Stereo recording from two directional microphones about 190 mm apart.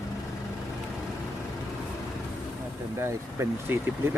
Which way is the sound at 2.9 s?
15° right (ahead or behind).